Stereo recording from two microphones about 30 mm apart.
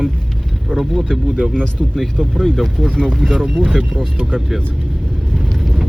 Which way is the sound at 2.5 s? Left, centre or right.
Left.